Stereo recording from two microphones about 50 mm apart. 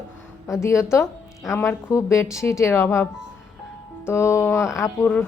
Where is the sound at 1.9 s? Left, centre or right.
Left.